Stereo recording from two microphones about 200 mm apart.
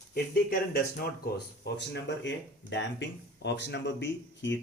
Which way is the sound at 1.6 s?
60° left (ahead or behind).